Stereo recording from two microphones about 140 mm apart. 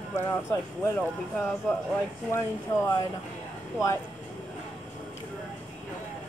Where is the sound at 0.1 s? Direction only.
20° left (ahead or behind).